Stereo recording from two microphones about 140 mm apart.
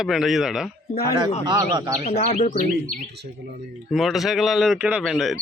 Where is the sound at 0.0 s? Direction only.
Centre (ahead or behind).